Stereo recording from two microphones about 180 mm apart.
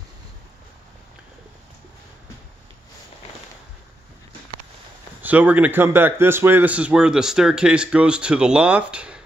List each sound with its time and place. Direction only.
5.2 s speech: 10° right (ahead or behind)